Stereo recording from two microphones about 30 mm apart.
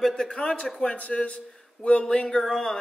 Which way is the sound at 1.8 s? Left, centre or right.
Left.